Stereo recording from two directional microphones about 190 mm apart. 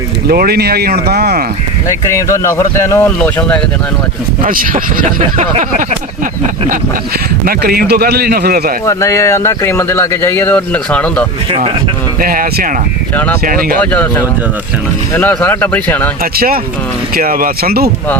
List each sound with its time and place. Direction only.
0.3 s a man's voice: 55° right (ahead or behind)
2.0 s speech: 15° left (ahead or behind)
4.4 s speech: 45° right (ahead or behind)
7.4 s a man's voice: 50° right (ahead or behind)
8.9 s speech: 15° left (ahead or behind)
11.5 s speech: 30° right (ahead or behind)
12.2 s speech: 50° right (ahead or behind)
13.9 s speech: 10° left (ahead or behind)
16.3 s speech: 50° right (ahead or behind)